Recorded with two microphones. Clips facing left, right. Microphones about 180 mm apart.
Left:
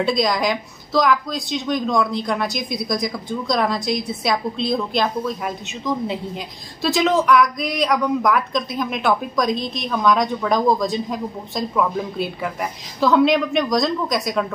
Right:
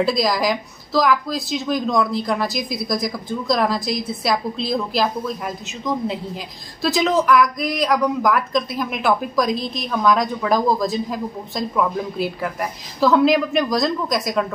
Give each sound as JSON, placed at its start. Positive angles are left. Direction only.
{"t": 0.0, "sound": "a woman's voice", "side_deg": 0}